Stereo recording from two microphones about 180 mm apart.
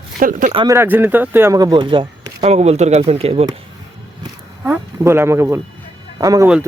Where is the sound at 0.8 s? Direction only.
10° right (ahead or behind); by 3.4 s 35° right (ahead or behind).